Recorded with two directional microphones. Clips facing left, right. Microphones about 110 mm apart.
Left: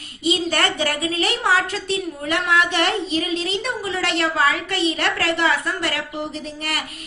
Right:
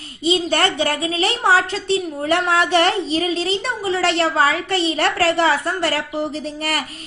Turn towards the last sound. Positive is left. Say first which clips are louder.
# right 4 dB
turn(degrees=-40)  # may be behind; listen again after turning